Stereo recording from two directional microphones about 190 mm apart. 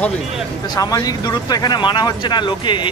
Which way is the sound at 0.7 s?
20° left (ahead or behind).